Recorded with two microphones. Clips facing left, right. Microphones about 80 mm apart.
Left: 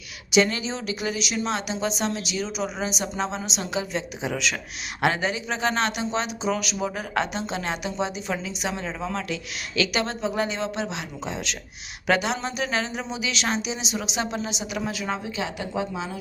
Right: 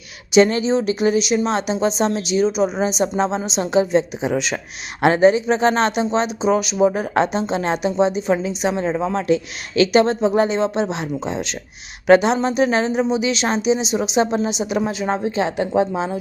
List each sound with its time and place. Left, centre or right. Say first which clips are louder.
0.3 s a woman's voice: right 8 dB; right